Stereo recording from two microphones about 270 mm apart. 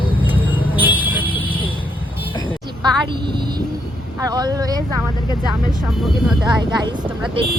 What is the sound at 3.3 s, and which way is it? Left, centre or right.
Speech, centre.